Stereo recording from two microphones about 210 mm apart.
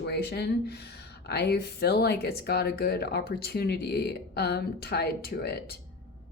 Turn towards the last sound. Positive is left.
turn(degrees=50)  # may be behind; listen again after turning